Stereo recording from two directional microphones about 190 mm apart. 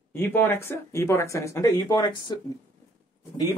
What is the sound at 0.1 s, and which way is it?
Speech, 10° left (ahead or behind).